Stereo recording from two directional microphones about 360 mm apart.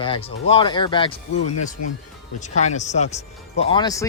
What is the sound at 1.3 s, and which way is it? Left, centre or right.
Speech, left.